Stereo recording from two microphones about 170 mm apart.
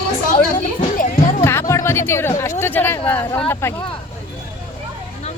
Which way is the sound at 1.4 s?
15° left (ahead or behind).